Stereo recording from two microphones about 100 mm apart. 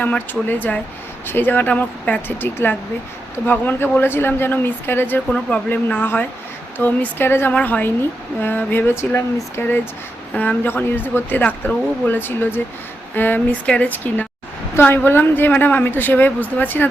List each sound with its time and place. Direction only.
0.0 s a woman's voice: 20° left (ahead or behind)